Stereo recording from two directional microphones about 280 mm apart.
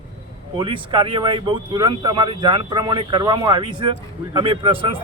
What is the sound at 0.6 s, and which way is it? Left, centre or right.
Speech, centre.